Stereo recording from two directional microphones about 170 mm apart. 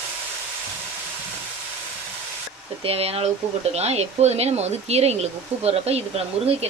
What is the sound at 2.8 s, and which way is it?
Speech, 35° right (ahead or behind).